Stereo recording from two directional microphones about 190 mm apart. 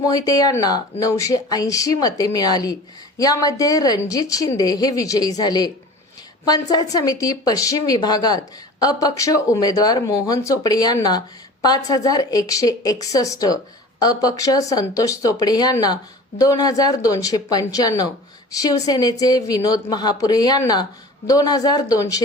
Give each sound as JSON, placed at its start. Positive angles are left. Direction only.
{"t": 0.0, "sound": "speech", "side_deg": 20}